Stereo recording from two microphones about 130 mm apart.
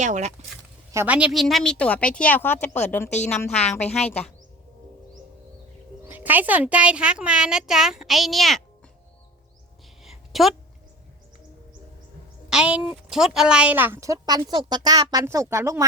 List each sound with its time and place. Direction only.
0.0 s speech: 65° right (ahead or behind)
0.9 s speech: 10° right (ahead or behind)
1.3 s speech: centre (ahead or behind)
3.1 s speech: 60° left (ahead or behind)
6.1 s speech: 15° right (ahead or behind)
10.0 s a sound: centre (ahead or behind)
12.5 s a woman's voice: 5° right (ahead or behind); by 15.9 s 25° right (ahead or behind)